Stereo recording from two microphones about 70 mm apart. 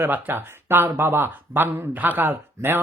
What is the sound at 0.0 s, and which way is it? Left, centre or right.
Speech, right.